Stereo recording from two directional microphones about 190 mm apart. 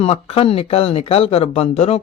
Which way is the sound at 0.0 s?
30° left (ahead or behind).